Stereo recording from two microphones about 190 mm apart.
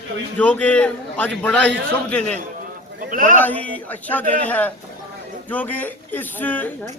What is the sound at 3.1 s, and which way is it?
Speech, 45° right (ahead or behind).